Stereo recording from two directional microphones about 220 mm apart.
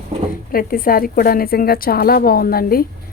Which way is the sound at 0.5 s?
40° left (ahead or behind).